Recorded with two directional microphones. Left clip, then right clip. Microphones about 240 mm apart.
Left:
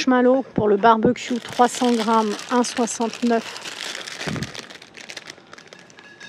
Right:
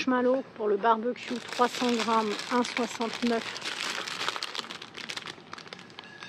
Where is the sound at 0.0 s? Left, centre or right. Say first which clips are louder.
Left 9 dB; left.